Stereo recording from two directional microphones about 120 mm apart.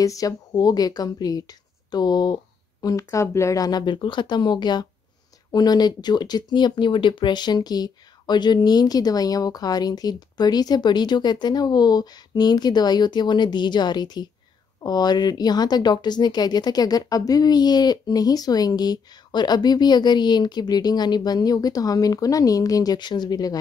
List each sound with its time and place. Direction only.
0.0 s speech: 30° left (ahead or behind)